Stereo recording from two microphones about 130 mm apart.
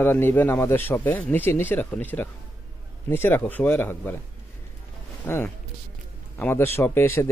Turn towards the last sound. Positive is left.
turn(degrees=20)  # may be behind; listen again after turning